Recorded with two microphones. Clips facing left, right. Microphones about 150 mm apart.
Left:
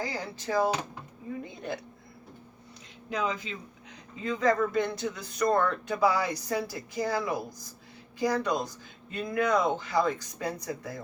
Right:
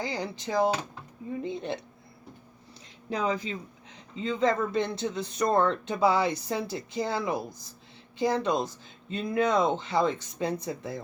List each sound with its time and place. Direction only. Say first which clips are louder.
0.0 s speech: right 2 dB; 20° right (ahead or behind)
3.1 s speech: right 3 dB; 35° right (ahead or behind)